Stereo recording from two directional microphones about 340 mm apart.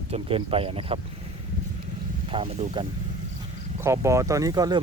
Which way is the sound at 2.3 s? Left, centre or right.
Centre.